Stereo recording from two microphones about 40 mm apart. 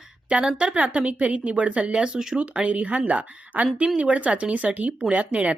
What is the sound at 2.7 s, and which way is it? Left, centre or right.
Speech, right.